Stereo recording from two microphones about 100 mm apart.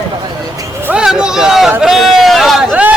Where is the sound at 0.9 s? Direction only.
5° right (ahead or behind).